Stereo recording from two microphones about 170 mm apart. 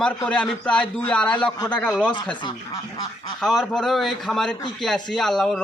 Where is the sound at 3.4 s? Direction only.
Centre (ahead or behind).